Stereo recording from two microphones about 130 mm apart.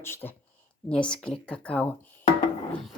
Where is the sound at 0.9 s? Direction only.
10° left (ahead or behind).